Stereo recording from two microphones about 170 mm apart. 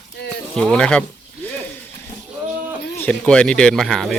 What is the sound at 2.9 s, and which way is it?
Speech, 5° left (ahead or behind).